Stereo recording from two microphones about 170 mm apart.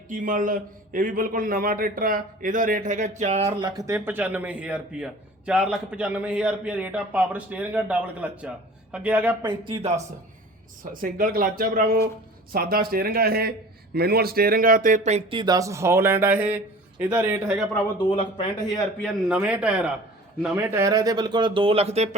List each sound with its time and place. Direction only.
0.1 s a man's voice: 50° right (ahead or behind)
3.4 s speech: 20° right (ahead or behind)
9.4 s speech: 25° right (ahead or behind)
10.9 s a man's voice: 55° right (ahead or behind)
15.3 s speech: 25° right (ahead or behind); by 17.7 s 5° right (ahead or behind)
18.2 s a man's voice: 30° left (ahead or behind)
19.3 s speech: 5° right (ahead or behind); by 22.1 s 40° right (ahead or behind)